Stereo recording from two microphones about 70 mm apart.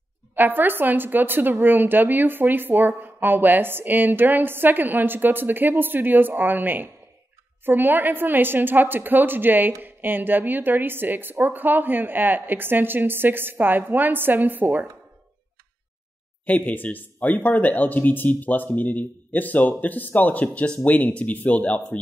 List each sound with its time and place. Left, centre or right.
0.3 s a woman's voice: right
16.4 s speech: left